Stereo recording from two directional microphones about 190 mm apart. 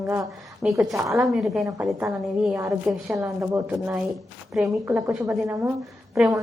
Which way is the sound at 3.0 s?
15° right (ahead or behind).